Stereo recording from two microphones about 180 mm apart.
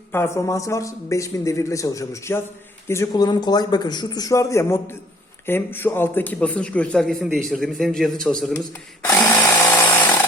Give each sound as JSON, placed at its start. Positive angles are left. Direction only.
{"t": 0.1, "sound": "a man's voice", "side_deg": 15}
{"t": 9.0, "sound": "tools", "side_deg": 10}